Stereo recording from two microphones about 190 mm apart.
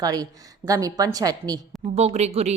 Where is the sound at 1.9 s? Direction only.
35° right (ahead or behind).